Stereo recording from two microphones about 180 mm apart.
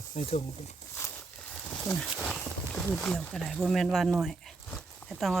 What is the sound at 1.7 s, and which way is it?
Speech, 10° left (ahead or behind).